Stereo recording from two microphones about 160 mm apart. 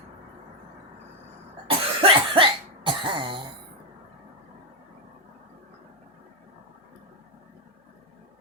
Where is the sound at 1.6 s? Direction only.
35° right (ahead or behind).